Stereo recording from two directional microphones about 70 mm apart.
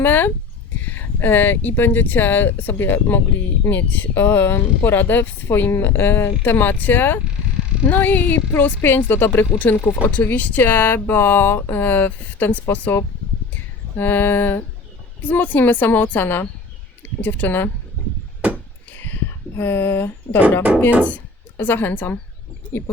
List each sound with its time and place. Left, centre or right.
0.0 s speech: left
14.0 s speech: left
19.5 s speech: left
21.6 s speech: left